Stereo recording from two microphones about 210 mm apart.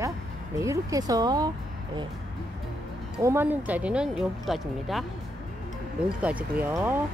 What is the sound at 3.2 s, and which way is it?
Speech, 10° right (ahead or behind).